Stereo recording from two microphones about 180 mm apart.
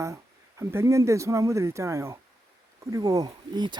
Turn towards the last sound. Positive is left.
turn(degrees=-25)  # may be behind; listen again after turning